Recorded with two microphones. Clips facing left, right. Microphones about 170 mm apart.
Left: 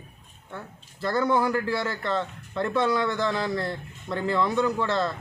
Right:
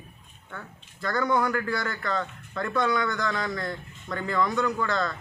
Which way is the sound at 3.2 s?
25° left (ahead or behind).